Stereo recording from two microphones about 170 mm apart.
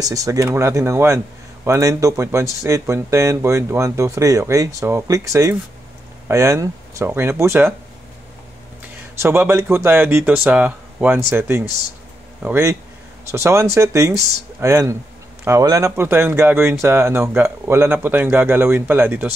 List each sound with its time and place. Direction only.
0.0 s speech: 20° right (ahead or behind)
9.1 s speech: 15° right (ahead or behind)